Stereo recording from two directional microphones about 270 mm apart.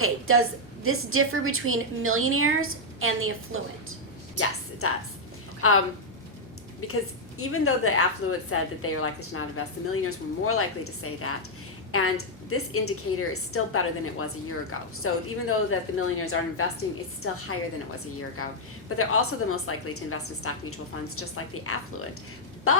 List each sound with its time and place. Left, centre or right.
0.0 s a woman's voice: right
4.8 s a woman's voice: left
6.8 s a woman's voice: left